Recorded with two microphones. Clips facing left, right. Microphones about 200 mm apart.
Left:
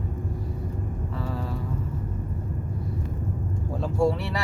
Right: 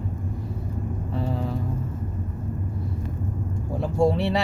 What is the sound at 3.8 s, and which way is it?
Speech, 20° right (ahead or behind).